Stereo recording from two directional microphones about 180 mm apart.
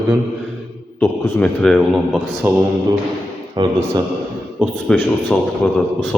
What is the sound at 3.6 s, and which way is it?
Speech, 25° right (ahead or behind).